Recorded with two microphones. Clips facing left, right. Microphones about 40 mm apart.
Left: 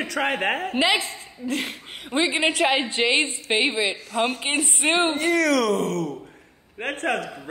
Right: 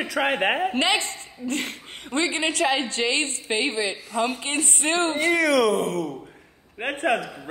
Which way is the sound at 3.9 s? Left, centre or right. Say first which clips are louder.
Left 1 dB; centre.